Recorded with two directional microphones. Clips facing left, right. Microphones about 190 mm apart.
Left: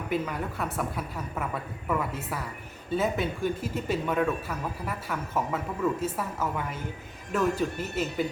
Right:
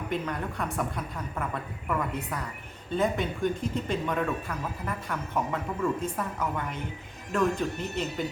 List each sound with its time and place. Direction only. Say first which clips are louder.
0.1 s speech: left 3 dB; 5° left (ahead or behind)